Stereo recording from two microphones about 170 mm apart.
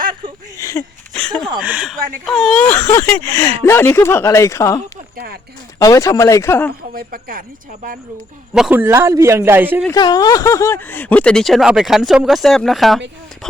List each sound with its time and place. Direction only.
0.6 s a sound: 15° left (ahead or behind)
1.1 s a sound: 5° left (ahead or behind)
1.5 s speech: 5° right (ahead or behind); by 4.8 s 15° left (ahead or behind)
5.1 s speech: 65° right (ahead or behind)
5.8 s speech: 20° left (ahead or behind)
6.9 s a woman's voice: 55° right (ahead or behind)
8.5 s speech: 5° right (ahead or behind)
8.8 s a man's voice: 15° right (ahead or behind)
9.9 s speech: 25° left (ahead or behind); by 13.0 s centre (ahead or behind)